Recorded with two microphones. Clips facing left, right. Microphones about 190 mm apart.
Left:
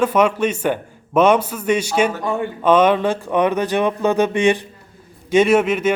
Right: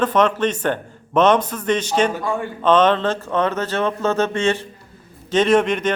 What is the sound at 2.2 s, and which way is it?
A man's voice, 20° left (ahead or behind).